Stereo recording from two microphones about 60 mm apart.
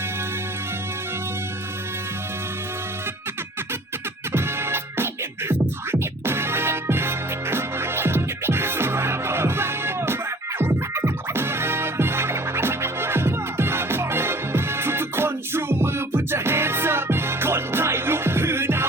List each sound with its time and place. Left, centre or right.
4.3 s music: right